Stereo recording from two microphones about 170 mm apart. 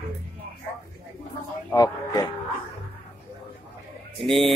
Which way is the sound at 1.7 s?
20° left (ahead or behind).